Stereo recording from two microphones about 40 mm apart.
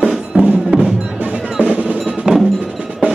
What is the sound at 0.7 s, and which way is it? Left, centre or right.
Music, centre.